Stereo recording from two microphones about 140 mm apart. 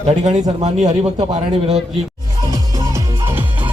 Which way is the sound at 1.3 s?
45° right (ahead or behind).